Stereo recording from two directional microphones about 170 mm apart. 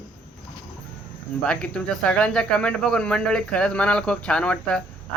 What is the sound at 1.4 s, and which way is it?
Speech, 5° left (ahead or behind).